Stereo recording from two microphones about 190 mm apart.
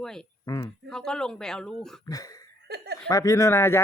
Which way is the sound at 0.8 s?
5° left (ahead or behind).